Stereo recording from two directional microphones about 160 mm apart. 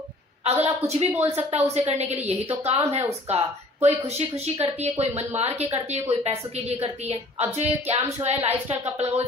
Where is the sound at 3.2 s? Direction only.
40° right (ahead or behind).